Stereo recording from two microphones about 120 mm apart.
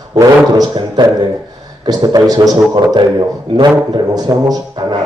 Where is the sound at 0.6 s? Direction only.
35° right (ahead or behind).